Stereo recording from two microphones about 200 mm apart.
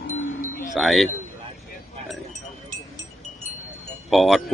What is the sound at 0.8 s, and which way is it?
Speech, centre (ahead or behind).